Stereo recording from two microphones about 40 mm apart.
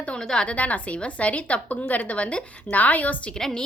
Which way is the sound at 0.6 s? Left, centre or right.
Left.